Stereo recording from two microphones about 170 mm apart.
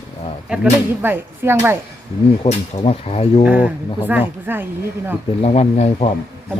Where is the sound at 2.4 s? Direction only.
35° left (ahead or behind).